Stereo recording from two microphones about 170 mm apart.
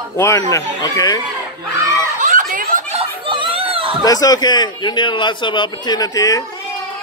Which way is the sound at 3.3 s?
30° right (ahead or behind).